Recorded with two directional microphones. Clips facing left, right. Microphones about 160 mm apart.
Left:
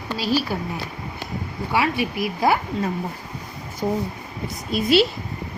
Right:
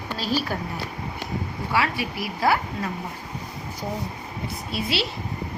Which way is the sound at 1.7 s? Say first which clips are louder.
Left 3 dB; 20° left (ahead or behind).